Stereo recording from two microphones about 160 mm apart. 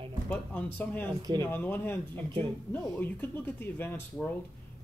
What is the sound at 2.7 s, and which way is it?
Speech, 15° left (ahead or behind).